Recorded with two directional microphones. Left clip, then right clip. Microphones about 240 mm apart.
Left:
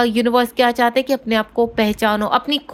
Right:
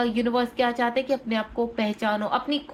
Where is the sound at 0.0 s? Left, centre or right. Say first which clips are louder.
Left 8 dB; left.